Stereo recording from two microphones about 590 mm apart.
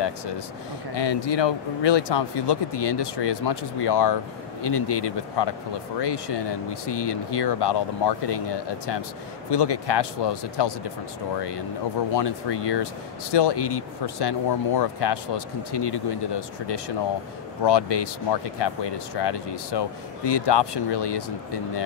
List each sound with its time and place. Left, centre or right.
0.9 s speech: left